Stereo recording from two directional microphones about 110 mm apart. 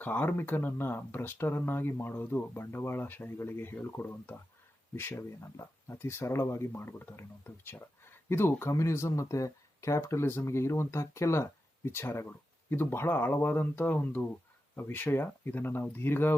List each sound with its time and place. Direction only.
0.0 s speech: 15° left (ahead or behind)